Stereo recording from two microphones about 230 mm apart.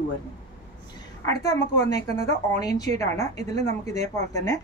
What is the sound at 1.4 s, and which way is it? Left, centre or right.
Speech, centre.